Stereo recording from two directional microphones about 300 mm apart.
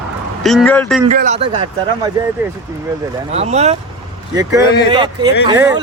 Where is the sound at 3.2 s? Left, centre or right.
Right.